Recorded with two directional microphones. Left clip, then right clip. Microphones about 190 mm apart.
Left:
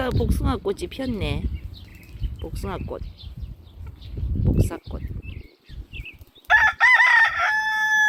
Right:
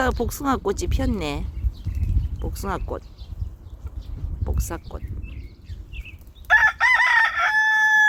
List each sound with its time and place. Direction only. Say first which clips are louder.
0.0 s speech: right 3 dB; 5° right (ahead or behind)
4.4 s a sound: left 5 dB; centre (ahead or behind)
6.5 s crowing: left 1 dB; 30° left (ahead or behind); by 8.0 s 55° left (ahead or behind)